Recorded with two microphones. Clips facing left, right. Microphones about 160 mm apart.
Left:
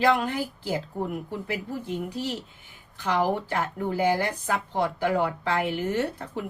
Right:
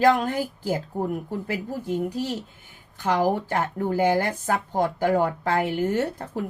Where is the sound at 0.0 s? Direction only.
45° right (ahead or behind).